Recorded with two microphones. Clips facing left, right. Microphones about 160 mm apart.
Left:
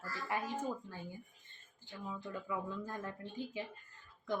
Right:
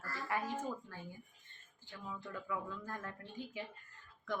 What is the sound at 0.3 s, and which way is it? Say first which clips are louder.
Speech: even; 25° left (ahead or behind).